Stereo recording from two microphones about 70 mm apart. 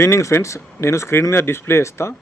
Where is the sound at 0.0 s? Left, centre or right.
Left.